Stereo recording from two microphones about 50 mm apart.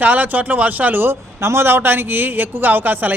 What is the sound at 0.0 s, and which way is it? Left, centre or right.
A man's voice, right.